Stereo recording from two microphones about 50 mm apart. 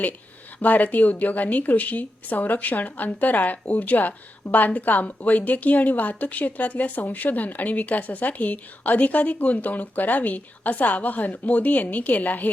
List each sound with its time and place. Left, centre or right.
0.6 s a woman's voice: left